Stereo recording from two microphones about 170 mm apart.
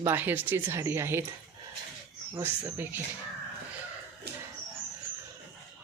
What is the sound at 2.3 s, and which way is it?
Speech, 15° right (ahead or behind).